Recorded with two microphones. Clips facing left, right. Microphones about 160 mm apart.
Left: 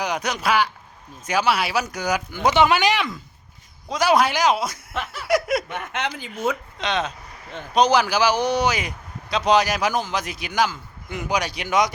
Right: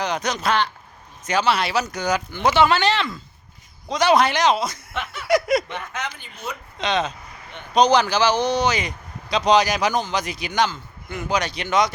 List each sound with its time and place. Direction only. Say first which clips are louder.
0.0 s a man's voice: right 1 dB; 10° left (ahead or behind)
5.3 s a sound: right 2 dB; 5° left (ahead or behind)
5.7 s speech: left 1 dB; 50° left (ahead or behind)
6.1 s speech: left 5 dB; 90° left
6.7 s a sound: right 2 dB; centre (ahead or behind)
7.7 s a man's voice: right 1 dB; 5° left (ahead or behind)